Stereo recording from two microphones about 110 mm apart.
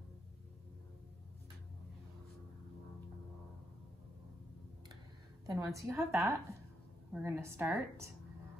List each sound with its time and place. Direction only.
5.5 s a woman's voice: 30° right (ahead or behind)